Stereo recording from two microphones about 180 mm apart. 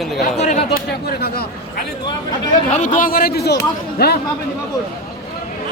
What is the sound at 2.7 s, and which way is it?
Speech, 45° left (ahead or behind).